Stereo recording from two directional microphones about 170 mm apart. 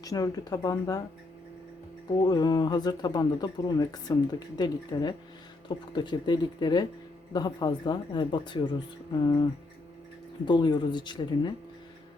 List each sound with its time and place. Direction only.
0.0 s speech: 20° left (ahead or behind)
2.0 s speech: 25° left (ahead or behind)